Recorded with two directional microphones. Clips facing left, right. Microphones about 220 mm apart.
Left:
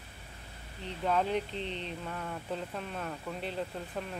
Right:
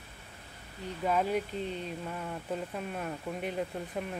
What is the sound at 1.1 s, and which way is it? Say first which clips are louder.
Speech: right 1 dB; 10° right (ahead or behind).